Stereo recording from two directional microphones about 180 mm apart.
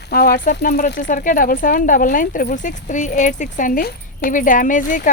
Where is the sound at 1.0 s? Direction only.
50° left (ahead or behind).